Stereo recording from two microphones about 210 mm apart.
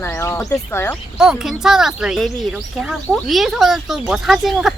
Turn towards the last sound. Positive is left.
turn(degrees=0)  # may be behind; listen again after turning